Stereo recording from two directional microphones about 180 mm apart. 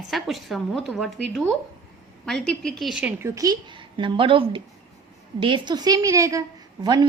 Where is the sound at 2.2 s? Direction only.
5° left (ahead or behind).